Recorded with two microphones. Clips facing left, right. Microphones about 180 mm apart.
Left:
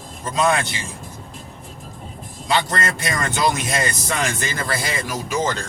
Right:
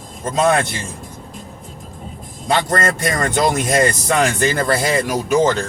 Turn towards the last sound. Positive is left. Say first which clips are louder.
# right 8 dB
turn(degrees=-60)  # may be behind; listen again after turning